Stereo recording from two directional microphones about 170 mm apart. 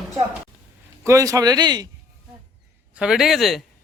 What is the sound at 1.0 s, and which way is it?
Speech, 20° right (ahead or behind).